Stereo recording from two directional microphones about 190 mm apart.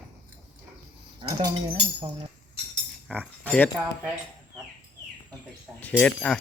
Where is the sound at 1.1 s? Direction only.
25° right (ahead or behind).